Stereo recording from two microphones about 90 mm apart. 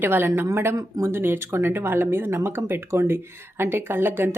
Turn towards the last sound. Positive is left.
turn(degrees=-25)  # may be behind; listen again after turning